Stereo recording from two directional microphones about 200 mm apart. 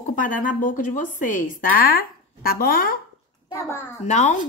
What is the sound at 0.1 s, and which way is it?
A woman's voice, 40° left (ahead or behind).